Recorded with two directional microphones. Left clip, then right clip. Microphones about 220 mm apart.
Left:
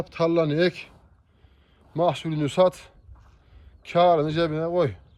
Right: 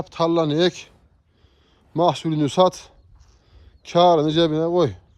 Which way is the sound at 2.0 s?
20° right (ahead or behind).